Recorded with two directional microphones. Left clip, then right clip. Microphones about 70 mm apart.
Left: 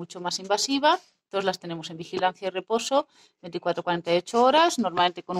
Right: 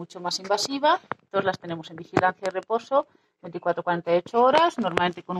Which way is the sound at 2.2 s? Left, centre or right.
Left.